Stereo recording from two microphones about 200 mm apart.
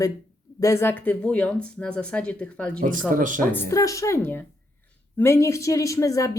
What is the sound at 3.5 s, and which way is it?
Speech, 15° left (ahead or behind).